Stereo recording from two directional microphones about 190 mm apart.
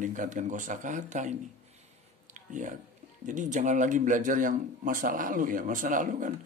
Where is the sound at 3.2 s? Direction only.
40° right (ahead or behind).